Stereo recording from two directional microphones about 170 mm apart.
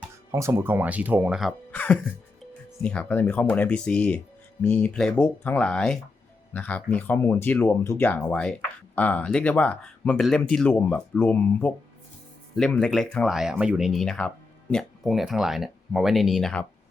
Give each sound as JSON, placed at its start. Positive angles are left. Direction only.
{"t": 0.3, "sound": "speech", "side_deg": -15}
{"t": 1.7, "sound": "music", "side_deg": 10}
{"t": 2.8, "sound": "speech", "side_deg": 10}